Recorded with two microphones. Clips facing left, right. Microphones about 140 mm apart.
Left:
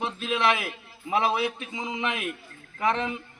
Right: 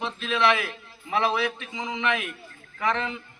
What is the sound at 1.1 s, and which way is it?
A man's voice, 10° left (ahead or behind).